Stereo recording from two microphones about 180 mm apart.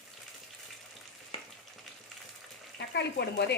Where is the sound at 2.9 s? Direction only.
70° left (ahead or behind).